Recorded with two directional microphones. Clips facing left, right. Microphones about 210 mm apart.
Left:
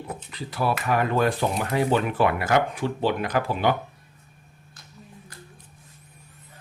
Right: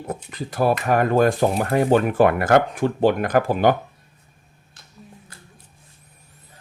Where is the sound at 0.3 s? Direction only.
45° right (ahead or behind).